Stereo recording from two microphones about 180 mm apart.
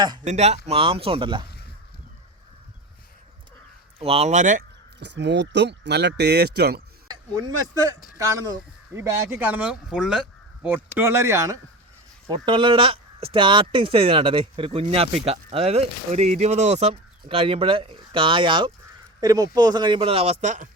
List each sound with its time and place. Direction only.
0.3 s speech: 40° right (ahead or behind)
4.0 s speech: 35° right (ahead or behind)
4.9 s speech: 75° right (ahead or behind)
7.1 s speech: 20° right (ahead or behind)
12.3 s speech: 30° right (ahead or behind)